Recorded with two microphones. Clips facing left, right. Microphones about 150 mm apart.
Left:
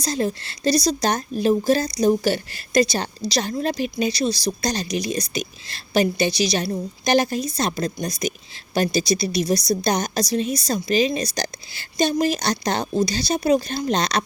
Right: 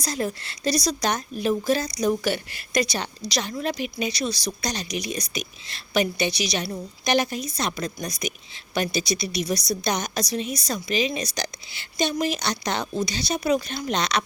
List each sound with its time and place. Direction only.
0.0 s a woman's voice: 30° left (ahead or behind)